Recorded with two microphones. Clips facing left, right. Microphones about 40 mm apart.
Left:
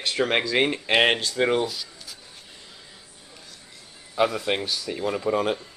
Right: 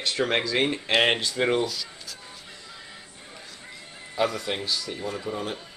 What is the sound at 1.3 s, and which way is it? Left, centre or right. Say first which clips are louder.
Speech: left 1 dB; centre.